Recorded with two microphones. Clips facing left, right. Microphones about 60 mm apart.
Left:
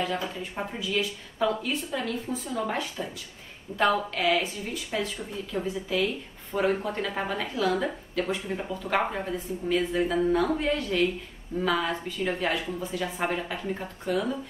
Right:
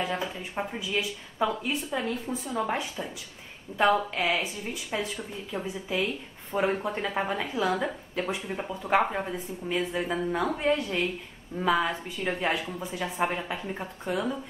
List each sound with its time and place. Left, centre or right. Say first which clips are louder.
0.0 s a woman's voice: left 1 dB; centre